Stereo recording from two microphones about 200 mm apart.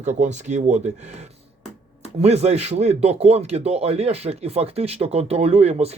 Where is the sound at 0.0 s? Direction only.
35° right (ahead or behind).